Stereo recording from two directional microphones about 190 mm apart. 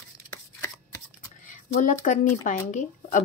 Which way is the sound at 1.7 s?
45° left (ahead or behind).